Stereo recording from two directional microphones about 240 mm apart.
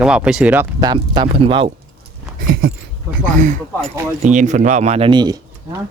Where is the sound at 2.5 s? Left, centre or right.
Right.